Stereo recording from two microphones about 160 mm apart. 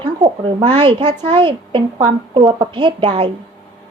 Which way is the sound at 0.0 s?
30° right (ahead or behind).